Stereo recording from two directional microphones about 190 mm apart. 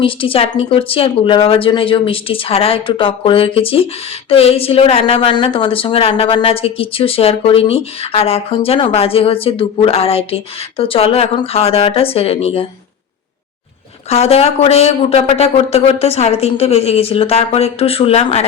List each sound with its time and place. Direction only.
0.0 s a woman's voice: 30° left (ahead or behind)
14.1 s a woman's voice: 35° left (ahead or behind)